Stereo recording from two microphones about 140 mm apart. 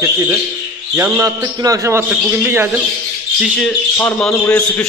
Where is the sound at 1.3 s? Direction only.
25° right (ahead or behind).